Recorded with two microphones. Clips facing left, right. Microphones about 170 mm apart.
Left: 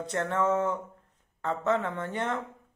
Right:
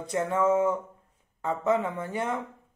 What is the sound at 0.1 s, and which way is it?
A man's voice, 10° right (ahead or behind).